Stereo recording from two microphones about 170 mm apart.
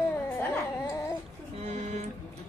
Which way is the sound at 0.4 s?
15° left (ahead or behind).